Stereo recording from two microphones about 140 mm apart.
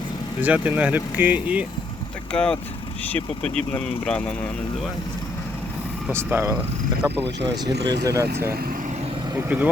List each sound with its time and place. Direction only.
0.4 s speech: 10° right (ahead or behind)
2.3 s speech: 5° left (ahead or behind)
3.7 s speech: 5° left (ahead or behind)
6.1 s speech: 15° right (ahead or behind)